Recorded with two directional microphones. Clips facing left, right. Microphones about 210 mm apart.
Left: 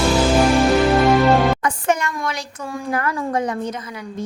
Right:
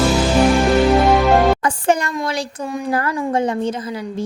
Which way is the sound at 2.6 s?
20° right (ahead or behind).